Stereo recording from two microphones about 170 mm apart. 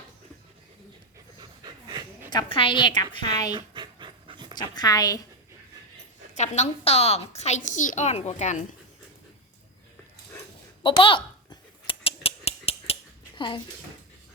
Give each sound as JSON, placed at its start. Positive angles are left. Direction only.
{"t": 1.4, "sound": "pant", "side_deg": -25}
{"t": 2.3, "sound": "speech", "side_deg": 30}
{"t": 3.8, "sound": "dog", "side_deg": -25}
{"t": 4.5, "sound": "speech", "side_deg": 25}
{"t": 6.3, "sound": "a woman's voice", "side_deg": 45}
{"t": 10.8, "sound": "a sound", "side_deg": 30}